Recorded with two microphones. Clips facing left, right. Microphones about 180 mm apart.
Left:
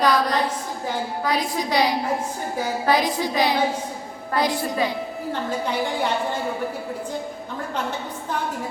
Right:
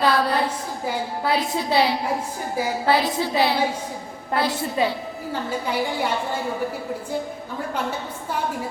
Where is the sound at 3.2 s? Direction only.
15° left (ahead or behind).